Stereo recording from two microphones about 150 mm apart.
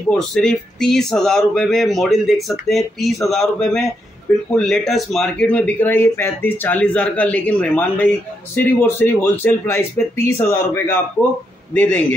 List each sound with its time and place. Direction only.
0.1 s speech: 5° left (ahead or behind)